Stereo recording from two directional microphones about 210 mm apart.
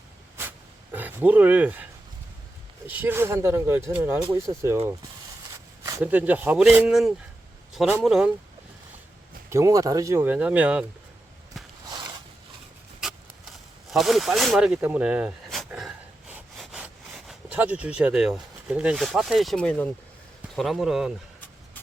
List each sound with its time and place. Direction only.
0.9 s speech: 10° right (ahead or behind)
5.8 s speech: 10° right (ahead or behind)
9.5 s speech: 15° right (ahead or behind)
13.0 s a sound: centre (ahead or behind)
13.9 s speech: centre (ahead or behind)
16.3 s sawing: 5° right (ahead or behind)
20.6 s speech: centre (ahead or behind)